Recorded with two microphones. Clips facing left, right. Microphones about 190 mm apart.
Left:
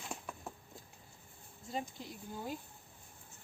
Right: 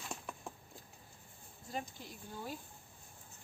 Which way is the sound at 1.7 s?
20° left (ahead or behind).